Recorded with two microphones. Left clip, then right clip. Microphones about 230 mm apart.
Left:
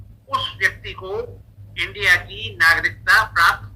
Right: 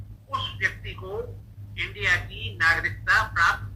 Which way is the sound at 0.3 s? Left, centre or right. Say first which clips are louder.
Left 7 dB; left.